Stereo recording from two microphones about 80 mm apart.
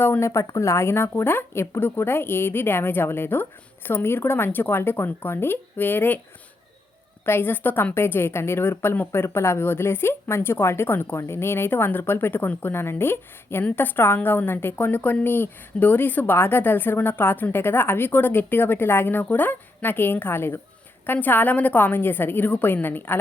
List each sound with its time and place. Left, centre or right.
0.0 s a woman's voice: left
0.3 s a woman's voice: left
7.3 s a woman's voice: left